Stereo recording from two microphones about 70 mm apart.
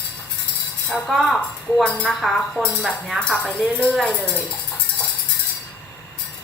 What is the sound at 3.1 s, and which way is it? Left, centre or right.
A woman's voice, centre.